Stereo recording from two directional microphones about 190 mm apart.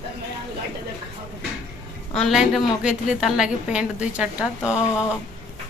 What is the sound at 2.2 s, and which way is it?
A woman's voice, centre (ahead or behind).